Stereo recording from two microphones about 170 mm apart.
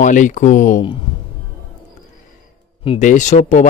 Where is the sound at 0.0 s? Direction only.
50° left (ahead or behind).